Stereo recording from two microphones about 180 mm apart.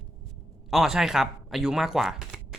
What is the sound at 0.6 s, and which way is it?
Speech, centre (ahead or behind).